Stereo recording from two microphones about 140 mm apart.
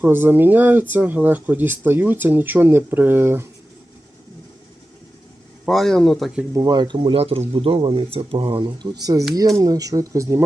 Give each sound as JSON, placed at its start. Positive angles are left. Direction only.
{"t": 0.0, "sound": "speech", "side_deg": -15}
{"t": 5.6, "sound": "speech", "side_deg": 0}
{"t": 6.5, "sound": "speech", "side_deg": -25}